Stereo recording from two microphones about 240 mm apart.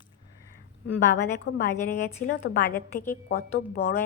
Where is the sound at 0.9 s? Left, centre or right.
Left.